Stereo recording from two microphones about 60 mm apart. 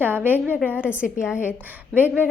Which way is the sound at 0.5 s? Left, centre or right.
Left.